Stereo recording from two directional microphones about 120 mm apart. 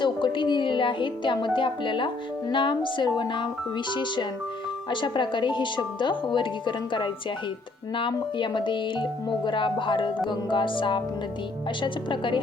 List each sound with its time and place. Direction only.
0.0 s music: 40° left (ahead or behind)
1.5 s speech: 40° left (ahead or behind)